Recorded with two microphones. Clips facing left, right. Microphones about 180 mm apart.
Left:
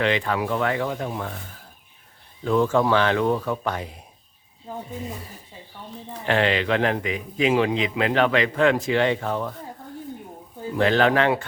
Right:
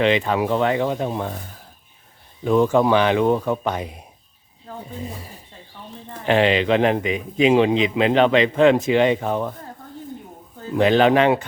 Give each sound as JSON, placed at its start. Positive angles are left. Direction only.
{"t": 0.0, "sound": "speech", "side_deg": -20}
{"t": 2.4, "sound": "speech", "side_deg": -15}
{"t": 4.7, "sound": "snake", "side_deg": 10}
{"t": 6.2, "sound": "speech", "side_deg": -20}
{"t": 10.8, "sound": "speech", "side_deg": -20}